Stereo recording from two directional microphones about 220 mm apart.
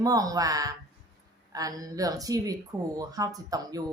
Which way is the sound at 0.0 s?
15° right (ahead or behind).